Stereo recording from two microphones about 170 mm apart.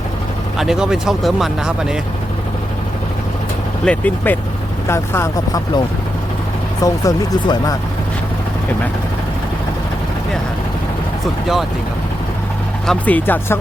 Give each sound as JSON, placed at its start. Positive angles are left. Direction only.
{"t": 0.6, "sound": "speech", "side_deg": -5}
{"t": 3.8, "sound": "speech", "side_deg": 10}
{"t": 6.8, "sound": "speech", "side_deg": 25}
{"t": 12.9, "sound": "speech", "side_deg": 10}